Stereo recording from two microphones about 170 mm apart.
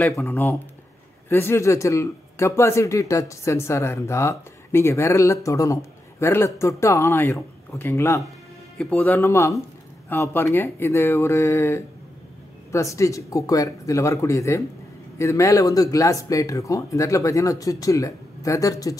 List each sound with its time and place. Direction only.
0.0 s a man's voice: 10° left (ahead or behind)